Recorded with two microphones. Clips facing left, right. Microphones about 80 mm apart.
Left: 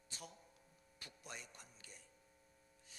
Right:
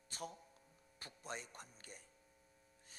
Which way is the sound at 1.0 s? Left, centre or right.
Right.